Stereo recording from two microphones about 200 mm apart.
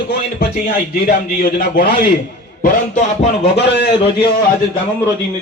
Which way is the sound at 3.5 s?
60° left (ahead or behind).